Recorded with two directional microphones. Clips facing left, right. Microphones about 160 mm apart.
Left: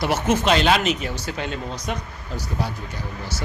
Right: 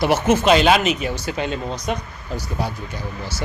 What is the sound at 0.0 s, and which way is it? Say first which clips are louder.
Speech: right 4 dB; 15° right (ahead or behind).